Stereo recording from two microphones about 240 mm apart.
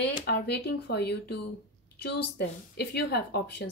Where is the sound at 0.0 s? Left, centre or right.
Left.